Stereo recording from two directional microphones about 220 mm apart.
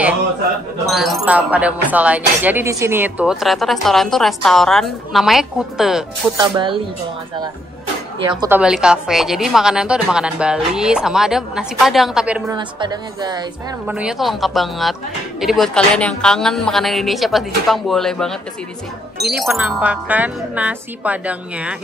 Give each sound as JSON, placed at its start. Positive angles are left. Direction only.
{"t": 0.8, "sound": "speech", "side_deg": 0}
{"t": 6.3, "sound": "speech", "side_deg": -20}
{"t": 8.2, "sound": "speech", "side_deg": -20}
{"t": 8.5, "sound": "speech", "side_deg": -5}
{"t": 12.5, "sound": "speech", "side_deg": -20}
{"t": 13.8, "sound": "speech", "side_deg": -5}
{"t": 19.3, "sound": "speech", "side_deg": -5}